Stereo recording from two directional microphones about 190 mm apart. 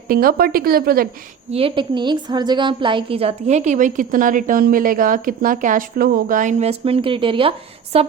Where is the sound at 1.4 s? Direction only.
30° right (ahead or behind).